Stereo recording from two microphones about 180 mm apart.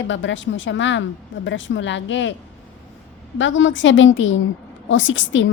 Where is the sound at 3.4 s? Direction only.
90° left.